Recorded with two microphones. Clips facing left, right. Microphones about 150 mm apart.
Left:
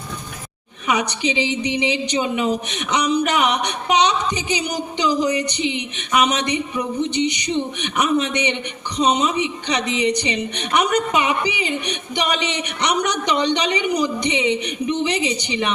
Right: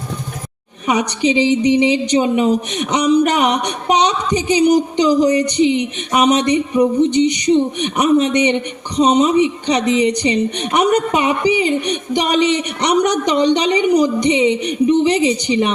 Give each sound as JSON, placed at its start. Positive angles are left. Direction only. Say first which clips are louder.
{"t": 0.9, "sound": "speech", "louder": "right 5 dB", "side_deg": -35}